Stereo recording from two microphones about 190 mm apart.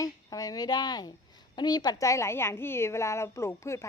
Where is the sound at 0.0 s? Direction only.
20° left (ahead or behind).